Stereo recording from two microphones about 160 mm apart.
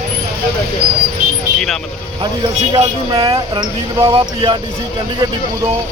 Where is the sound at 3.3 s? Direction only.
30° right (ahead or behind).